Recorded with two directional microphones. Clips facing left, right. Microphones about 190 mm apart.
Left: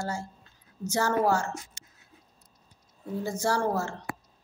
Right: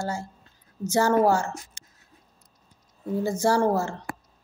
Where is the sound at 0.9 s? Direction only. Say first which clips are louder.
Right 5 dB; 25° right (ahead or behind).